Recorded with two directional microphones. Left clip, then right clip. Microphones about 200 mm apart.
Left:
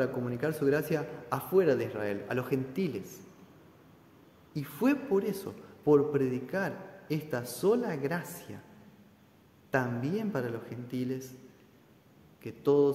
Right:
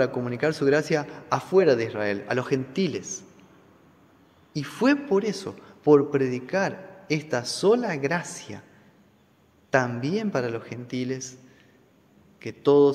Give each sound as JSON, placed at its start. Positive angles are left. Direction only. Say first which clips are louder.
{"t": 0.0, "sound": "a man's voice", "louder": "right 7 dB", "side_deg": -25}
{"t": 4.6, "sound": "a man's voice", "louder": "right 7 dB", "side_deg": -25}
{"t": 9.7, "sound": "a man's voice", "louder": "right 7 dB", "side_deg": -25}
{"t": 12.4, "sound": "a man's voice", "louder": "right 7 dB", "side_deg": -25}